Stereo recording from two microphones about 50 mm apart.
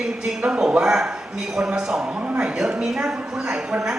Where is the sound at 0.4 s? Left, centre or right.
Right.